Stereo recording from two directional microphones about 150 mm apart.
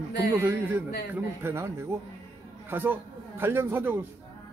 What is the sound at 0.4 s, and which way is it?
A man's voice, 15° right (ahead or behind).